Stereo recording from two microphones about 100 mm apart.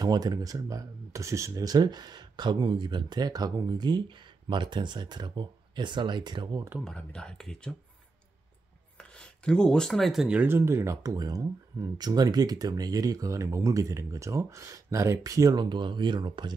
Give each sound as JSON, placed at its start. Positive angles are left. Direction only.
{"t": 0.0, "sound": "speech", "side_deg": -40}
{"t": 6.8, "sound": "speech", "side_deg": 10}
{"t": 8.9, "sound": "speech", "side_deg": 10}
{"t": 10.4, "sound": "speech", "side_deg": -25}